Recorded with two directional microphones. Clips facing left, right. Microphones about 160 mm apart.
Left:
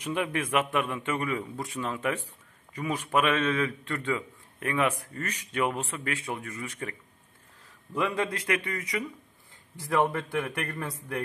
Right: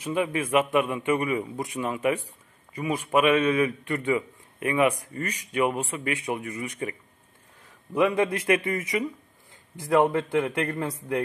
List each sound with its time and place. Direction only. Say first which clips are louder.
0.0 s a man's voice: right 3 dB; 5° right (ahead or behind)